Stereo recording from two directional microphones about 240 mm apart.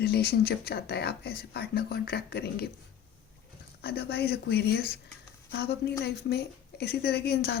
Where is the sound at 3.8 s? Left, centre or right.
Left.